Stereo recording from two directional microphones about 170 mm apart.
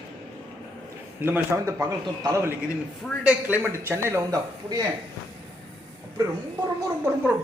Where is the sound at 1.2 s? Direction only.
15° right (ahead or behind).